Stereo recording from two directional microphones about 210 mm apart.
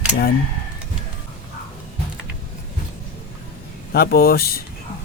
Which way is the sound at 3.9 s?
45° left (ahead or behind).